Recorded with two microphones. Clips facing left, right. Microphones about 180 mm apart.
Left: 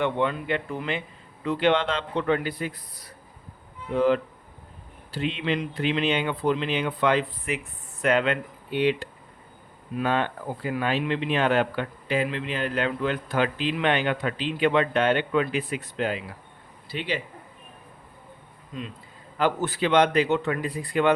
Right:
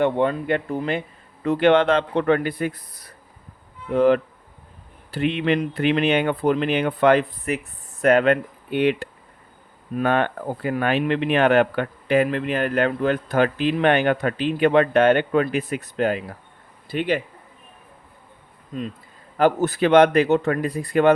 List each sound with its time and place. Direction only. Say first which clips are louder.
0.0 s speech: right 5 dB; 40° right (ahead or behind)
1.5 s speech: right 6 dB; 50° right (ahead or behind)
3.9 s speech: right 5 dB; 60° right (ahead or behind)
19.4 s speech: right 6 dB; 45° right (ahead or behind)